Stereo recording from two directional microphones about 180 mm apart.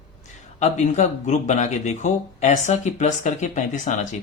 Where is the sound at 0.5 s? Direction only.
40° left (ahead or behind).